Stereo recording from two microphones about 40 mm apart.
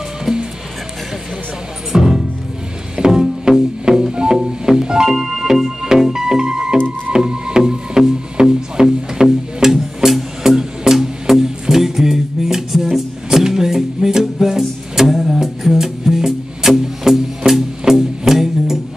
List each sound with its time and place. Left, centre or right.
0.2 s music: centre
1.9 s music: centre